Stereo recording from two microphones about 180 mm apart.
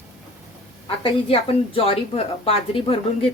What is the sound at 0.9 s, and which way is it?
A woman's voice, 30° left (ahead or behind).